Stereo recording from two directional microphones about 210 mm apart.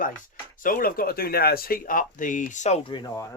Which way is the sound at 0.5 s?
40° left (ahead or behind).